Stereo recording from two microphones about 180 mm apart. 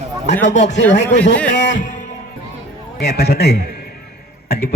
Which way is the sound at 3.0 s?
65° left (ahead or behind).